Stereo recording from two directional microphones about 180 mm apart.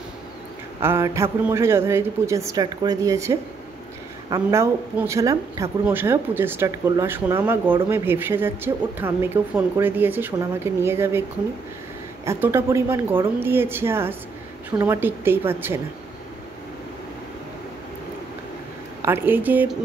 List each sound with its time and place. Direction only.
0.7 s speech: 15° right (ahead or behind)
12.3 s speech: 15° right (ahead or behind)
19.0 s speech: 10° right (ahead or behind)